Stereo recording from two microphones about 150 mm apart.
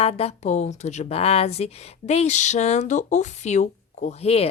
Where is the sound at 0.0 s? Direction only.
45° left (ahead or behind).